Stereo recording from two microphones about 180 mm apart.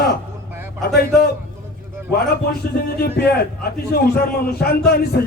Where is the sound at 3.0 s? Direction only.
60° left (ahead or behind).